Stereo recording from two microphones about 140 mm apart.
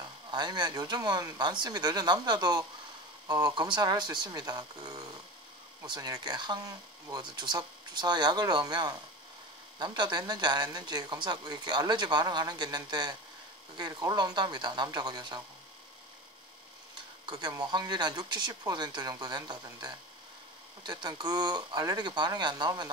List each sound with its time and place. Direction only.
0.3 s speech: 30° right (ahead or behind)
5.9 s speech: 25° right (ahead or behind)
17.3 s speech: 30° right (ahead or behind)